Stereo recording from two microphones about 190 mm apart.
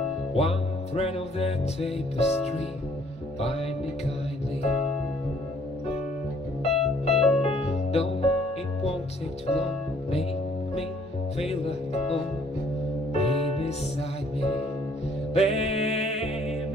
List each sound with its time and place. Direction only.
0.4 s music: 30° left (ahead or behind)
6.6 s music: 35° left (ahead or behind)
11.6 s speech: 30° left (ahead or behind)
13.1 s music: 30° left (ahead or behind)
15.3 s music: 35° left (ahead or behind)